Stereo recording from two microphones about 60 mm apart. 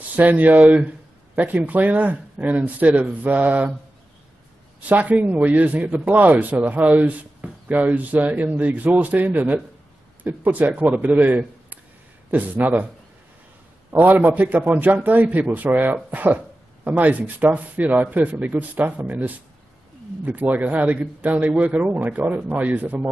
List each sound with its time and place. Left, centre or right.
0.1 s a man's voice: right
4.7 s a man's voice: right
14.2 s a man's voice: right